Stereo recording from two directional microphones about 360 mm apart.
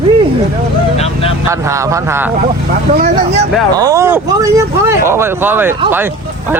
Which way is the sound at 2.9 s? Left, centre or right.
Centre.